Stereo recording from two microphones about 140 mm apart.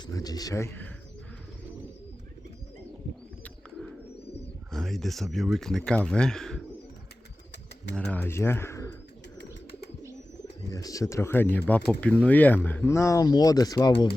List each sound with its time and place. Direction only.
0.0 s speech: 25° left (ahead or behind)
4.7 s speech: centre (ahead or behind)
7.9 s speech: 10° left (ahead or behind)
10.7 s speech: 25° left (ahead or behind)